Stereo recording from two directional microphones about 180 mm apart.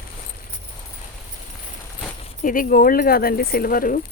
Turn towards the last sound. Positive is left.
turn(degrees=50)  # may be behind; listen again after turning